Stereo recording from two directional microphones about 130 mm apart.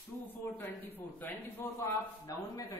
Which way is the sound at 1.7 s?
25° left (ahead or behind).